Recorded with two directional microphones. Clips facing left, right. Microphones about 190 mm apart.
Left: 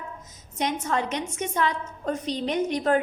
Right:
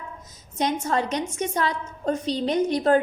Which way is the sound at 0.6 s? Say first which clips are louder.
Right 2 dB; 35° right (ahead or behind).